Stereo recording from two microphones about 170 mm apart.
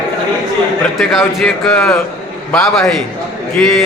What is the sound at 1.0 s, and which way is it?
A man's voice, centre (ahead or behind).